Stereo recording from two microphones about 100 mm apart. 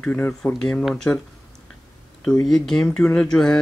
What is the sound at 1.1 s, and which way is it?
Speech, 25° left (ahead or behind).